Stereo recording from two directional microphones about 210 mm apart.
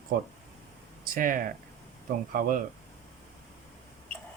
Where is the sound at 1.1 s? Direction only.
40° right (ahead or behind).